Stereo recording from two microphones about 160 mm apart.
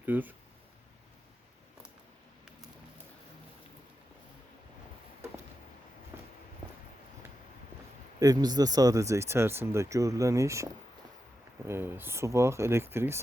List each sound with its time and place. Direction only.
0.0 s speech: 10° right (ahead or behind)
6.1 s walk: 15° right (ahead or behind)
8.2 s speech: 25° right (ahead or behind)